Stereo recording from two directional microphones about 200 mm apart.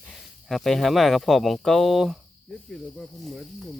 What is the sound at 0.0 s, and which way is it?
Speech, centre (ahead or behind).